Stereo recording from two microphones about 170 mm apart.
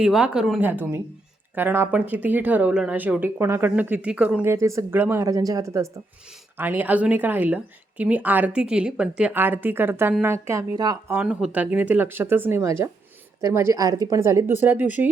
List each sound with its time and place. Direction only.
0.0 s a woman's voice: 5° right (ahead or behind)
4.5 s a woman's voice: 20° right (ahead or behind)
11.2 s a woman's voice: 5° right (ahead or behind)